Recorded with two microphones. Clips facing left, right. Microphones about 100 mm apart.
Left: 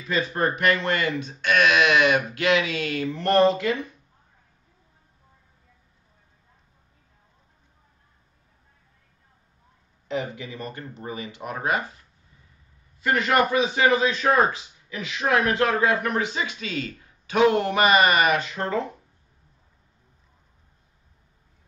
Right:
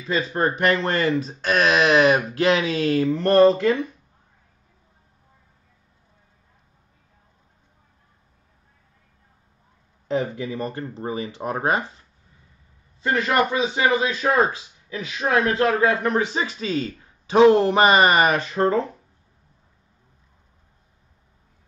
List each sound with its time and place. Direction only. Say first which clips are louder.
0.3 s speech: right 3 dB; 30° right (ahead or behind)
10.0 s speech: right 5 dB; 35° right (ahead or behind)
13.0 s a man's voice: right 1 dB; 25° right (ahead or behind)